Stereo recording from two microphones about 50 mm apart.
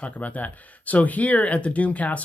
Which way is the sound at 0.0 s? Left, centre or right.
Left.